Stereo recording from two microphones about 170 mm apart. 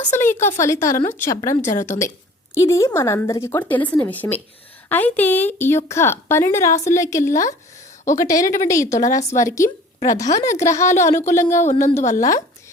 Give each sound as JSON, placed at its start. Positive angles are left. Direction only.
{"t": 0.1, "sound": "a woman's voice", "side_deg": 15}
{"t": 10.8, "sound": "a woman's voice", "side_deg": 45}
{"t": 11.3, "sound": "a woman's voice", "side_deg": 15}
{"t": 11.5, "sound": "a woman's voice", "side_deg": 45}